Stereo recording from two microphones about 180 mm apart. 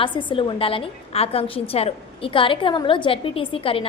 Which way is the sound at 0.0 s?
30° left (ahead or behind).